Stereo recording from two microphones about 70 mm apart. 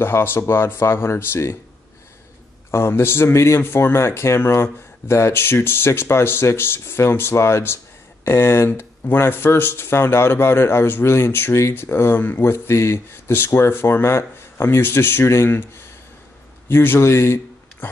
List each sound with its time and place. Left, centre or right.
0.0 s speech: left
2.7 s speech: left
16.6 s a man's voice: left